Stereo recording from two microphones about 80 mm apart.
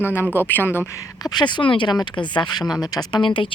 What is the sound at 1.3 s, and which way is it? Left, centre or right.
Speech, left.